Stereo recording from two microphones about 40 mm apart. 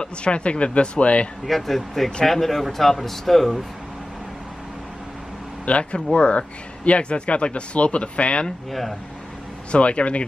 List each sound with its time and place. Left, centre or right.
0.0 s speech: left
1.4 s speech: centre
5.7 s speech: left
9.7 s speech: left